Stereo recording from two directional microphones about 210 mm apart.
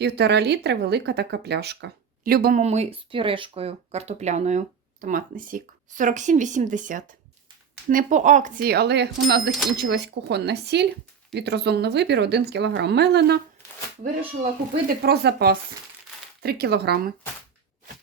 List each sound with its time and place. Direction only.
0.0 s speech: 50° right (ahead or behind)
9.5 s speech: centre (ahead or behind)
9.7 s speech: 50° right (ahead or behind)
14.8 s speech: 50° right (ahead or behind)